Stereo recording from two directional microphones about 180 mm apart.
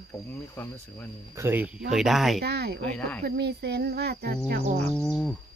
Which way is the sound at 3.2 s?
65° right (ahead or behind).